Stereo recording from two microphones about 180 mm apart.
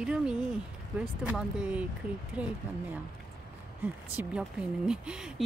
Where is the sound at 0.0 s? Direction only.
5° right (ahead or behind).